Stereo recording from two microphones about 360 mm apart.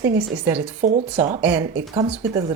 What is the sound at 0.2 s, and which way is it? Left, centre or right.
Speech, centre.